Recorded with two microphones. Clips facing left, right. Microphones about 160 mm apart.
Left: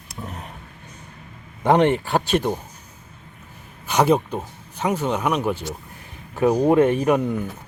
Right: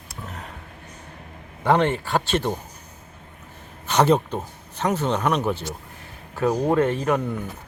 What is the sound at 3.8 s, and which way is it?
Speech, 10° left (ahead or behind).